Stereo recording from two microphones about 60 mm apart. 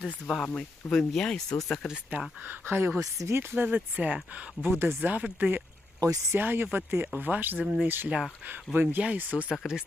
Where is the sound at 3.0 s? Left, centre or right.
Right.